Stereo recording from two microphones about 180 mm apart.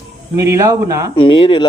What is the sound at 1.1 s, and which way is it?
Speech, 30° left (ahead or behind).